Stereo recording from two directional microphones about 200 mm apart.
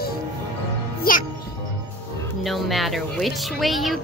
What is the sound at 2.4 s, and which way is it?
Speech, centre (ahead or behind).